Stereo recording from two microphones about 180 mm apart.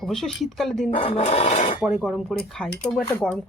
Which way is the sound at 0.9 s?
35° left (ahead or behind).